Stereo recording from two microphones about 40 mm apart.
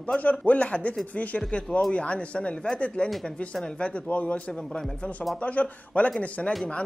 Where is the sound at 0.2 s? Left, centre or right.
Left.